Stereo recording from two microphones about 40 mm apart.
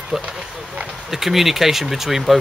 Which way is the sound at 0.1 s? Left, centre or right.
Centre.